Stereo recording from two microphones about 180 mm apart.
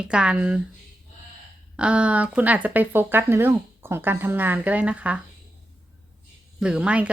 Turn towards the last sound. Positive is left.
turn(degrees=-5)  # may be behind; listen again after turning